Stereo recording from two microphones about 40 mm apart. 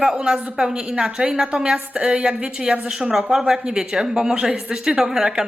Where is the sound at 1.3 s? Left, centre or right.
Right.